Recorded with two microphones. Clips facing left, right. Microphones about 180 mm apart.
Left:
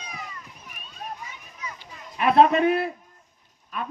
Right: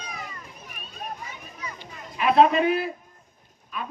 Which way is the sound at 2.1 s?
55° left (ahead or behind).